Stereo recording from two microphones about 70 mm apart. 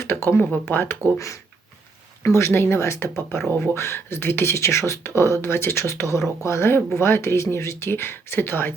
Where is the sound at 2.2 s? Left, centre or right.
Left.